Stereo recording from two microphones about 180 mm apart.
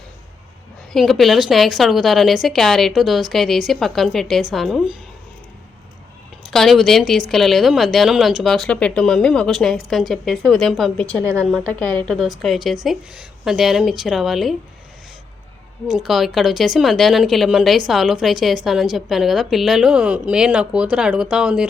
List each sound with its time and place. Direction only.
0.9 s speech: centre (ahead or behind)
6.4 s speech: centre (ahead or behind)
11.0 s a woman's voice: 15° right (ahead or behind)
11.3 s speech: centre (ahead or behind)
15.9 s speech: centre (ahead or behind)